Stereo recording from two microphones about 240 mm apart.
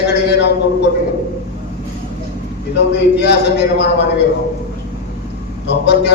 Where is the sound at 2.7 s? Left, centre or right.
Left.